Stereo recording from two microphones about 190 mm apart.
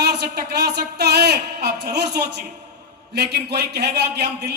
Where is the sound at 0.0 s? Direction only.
60° right (ahead or behind).